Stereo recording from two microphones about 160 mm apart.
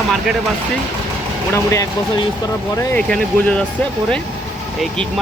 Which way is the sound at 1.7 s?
20° left (ahead or behind).